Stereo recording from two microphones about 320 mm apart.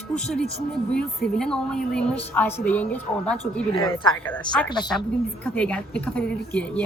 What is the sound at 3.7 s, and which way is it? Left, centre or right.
Speech, centre.